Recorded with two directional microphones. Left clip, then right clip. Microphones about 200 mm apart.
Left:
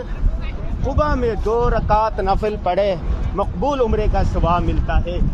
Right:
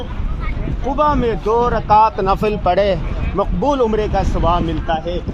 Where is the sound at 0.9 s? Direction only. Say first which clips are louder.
Right 4 dB; 45° right (ahead or behind).